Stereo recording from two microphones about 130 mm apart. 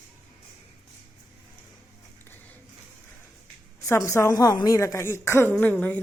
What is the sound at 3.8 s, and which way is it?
A woman's voice, 25° left (ahead or behind).